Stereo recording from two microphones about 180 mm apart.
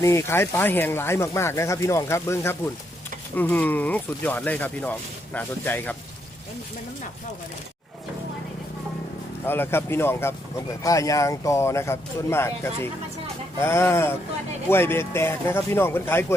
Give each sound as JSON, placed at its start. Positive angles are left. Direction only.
{"t": 0.0, "sound": "speech", "side_deg": 15}
{"t": 9.5, "sound": "speech", "side_deg": 10}